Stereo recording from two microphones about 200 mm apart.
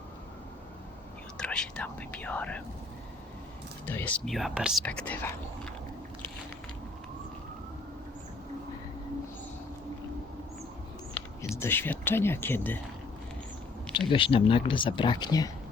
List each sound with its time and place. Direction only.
1.4 s speech: 5° left (ahead or behind)
3.8 s speech: 10° left (ahead or behind)
11.5 s speech: 10° left (ahead or behind)
14.1 s speech: 25° left (ahead or behind)